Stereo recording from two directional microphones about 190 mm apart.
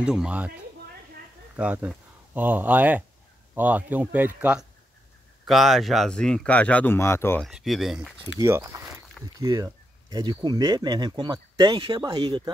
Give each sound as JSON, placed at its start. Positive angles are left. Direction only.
{"t": 0.0, "sound": "speech", "side_deg": -5}
{"t": 1.6, "sound": "speech", "side_deg": -5}
{"t": 7.4, "sound": "speech", "side_deg": 0}
{"t": 8.4, "sound": "speech", "side_deg": -15}